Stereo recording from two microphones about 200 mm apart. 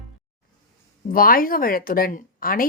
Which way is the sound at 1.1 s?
45° left (ahead or behind).